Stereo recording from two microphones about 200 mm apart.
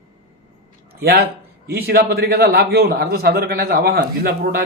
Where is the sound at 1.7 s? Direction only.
50° right (ahead or behind).